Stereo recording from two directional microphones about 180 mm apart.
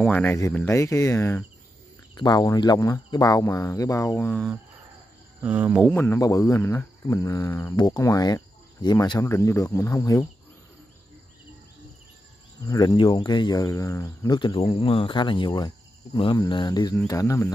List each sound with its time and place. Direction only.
0.0 s speech: 10° left (ahead or behind)
5.4 s speech: 10° right (ahead or behind)
5.9 s speech: 10° left (ahead or behind)
12.6 s speech: 20° left (ahead or behind)